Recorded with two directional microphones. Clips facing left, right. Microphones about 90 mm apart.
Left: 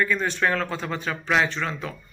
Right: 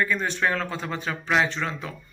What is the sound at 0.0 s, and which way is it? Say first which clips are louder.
Speech: left 1 dB; 20° right (ahead or behind).